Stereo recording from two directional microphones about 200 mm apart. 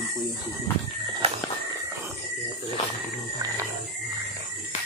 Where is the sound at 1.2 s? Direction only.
30° right (ahead or behind).